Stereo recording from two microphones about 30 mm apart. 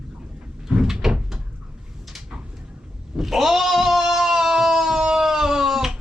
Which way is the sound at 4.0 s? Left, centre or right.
Centre.